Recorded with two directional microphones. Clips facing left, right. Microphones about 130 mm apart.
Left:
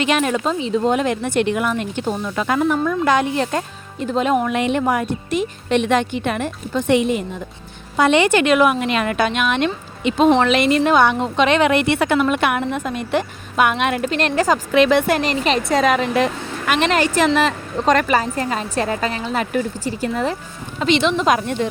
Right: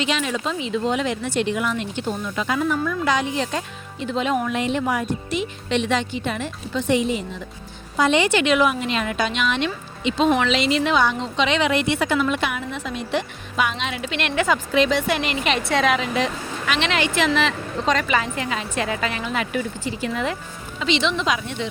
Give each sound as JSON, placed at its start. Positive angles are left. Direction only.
{"t": 0.0, "sound": "speech", "side_deg": 55}
{"t": 0.6, "sound": "speech", "side_deg": 35}
{"t": 0.9, "sound": "speech", "side_deg": 50}
{"t": 4.5, "sound": "speech", "side_deg": 65}
{"t": 4.8, "sound": "speech", "side_deg": 55}
{"t": 14.7, "sound": "speech", "side_deg": 60}